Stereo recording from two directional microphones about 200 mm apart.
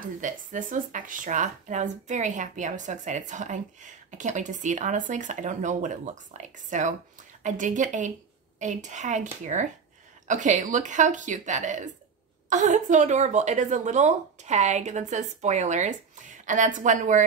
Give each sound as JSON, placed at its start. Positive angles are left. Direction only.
{"t": 0.2, "sound": "speech", "side_deg": -40}